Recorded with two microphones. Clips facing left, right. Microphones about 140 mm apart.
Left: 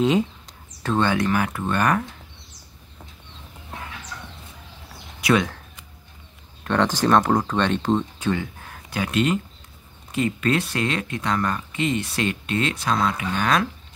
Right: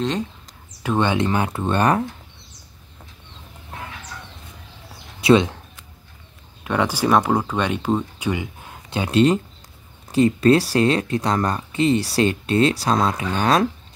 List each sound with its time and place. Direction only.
0.0 s a sound: 5° left (ahead or behind)
0.8 s speech: 20° right (ahead or behind)
5.2 s speech: 25° right (ahead or behind)
6.6 s speech: 10° right (ahead or behind); by 13.7 s 30° right (ahead or behind)